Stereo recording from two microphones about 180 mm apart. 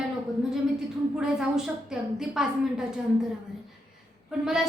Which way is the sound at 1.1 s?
5° right (ahead or behind).